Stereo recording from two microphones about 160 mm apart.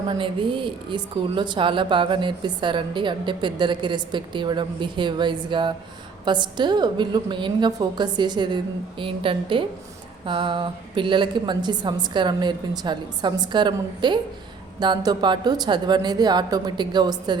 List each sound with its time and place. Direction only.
0.1 s a woman's voice: 30° right (ahead or behind)